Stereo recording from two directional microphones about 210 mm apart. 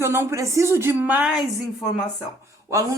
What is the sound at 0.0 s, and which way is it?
Speech, 10° right (ahead or behind).